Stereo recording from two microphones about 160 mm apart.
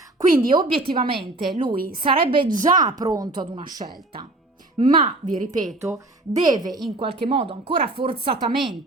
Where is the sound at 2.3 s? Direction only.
30° right (ahead or behind).